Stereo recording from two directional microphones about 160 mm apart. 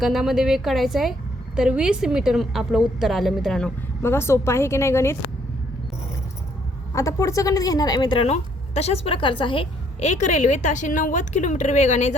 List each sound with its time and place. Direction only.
0.0 s a woman's voice: centre (ahead or behind)
4.0 s a woman's voice: 15° left (ahead or behind)
6.9 s speech: 20° left (ahead or behind)
10.0 s a woman's voice: 45° left (ahead or behind)